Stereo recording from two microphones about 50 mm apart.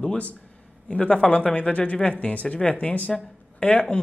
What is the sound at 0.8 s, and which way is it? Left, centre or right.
Speech, centre.